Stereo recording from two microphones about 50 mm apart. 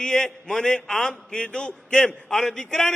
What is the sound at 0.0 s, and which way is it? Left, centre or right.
A man's voice, centre.